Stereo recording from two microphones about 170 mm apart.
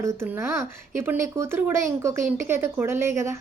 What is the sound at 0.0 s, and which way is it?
A woman's voice, 15° right (ahead or behind).